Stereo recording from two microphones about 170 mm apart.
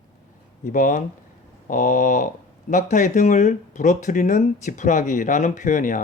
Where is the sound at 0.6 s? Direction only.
50° left (ahead or behind).